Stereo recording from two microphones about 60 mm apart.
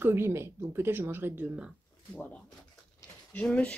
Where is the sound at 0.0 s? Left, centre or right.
Right.